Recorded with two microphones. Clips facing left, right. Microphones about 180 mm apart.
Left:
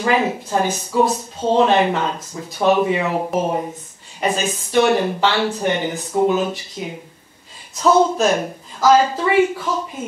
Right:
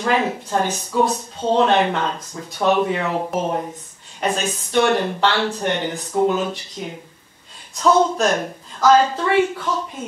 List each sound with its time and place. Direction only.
0.0 s speech: 5° left (ahead or behind)